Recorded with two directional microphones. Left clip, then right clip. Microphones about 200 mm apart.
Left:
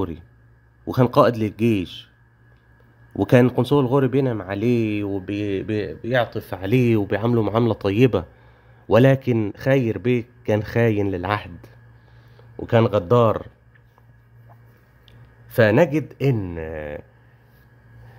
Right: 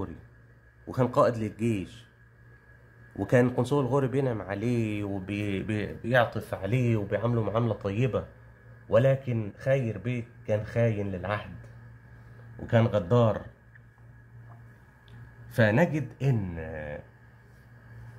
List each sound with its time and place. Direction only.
0.8 s speech: 40° left (ahead or behind)
3.2 s speech: 40° left (ahead or behind)
6.5 s speech: 45° left (ahead or behind)
12.6 s speech: 55° left (ahead or behind)
15.5 s speech: 50° left (ahead or behind)